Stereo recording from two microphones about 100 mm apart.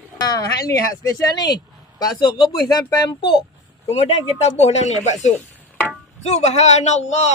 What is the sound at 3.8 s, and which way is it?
Speech, 90° left.